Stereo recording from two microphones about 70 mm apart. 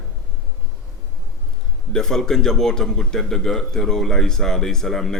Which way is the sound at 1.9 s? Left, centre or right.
Centre.